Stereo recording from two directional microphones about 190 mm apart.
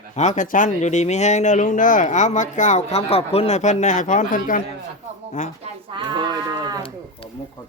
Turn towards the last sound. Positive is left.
turn(degrees=30)  # may be behind; listen again after turning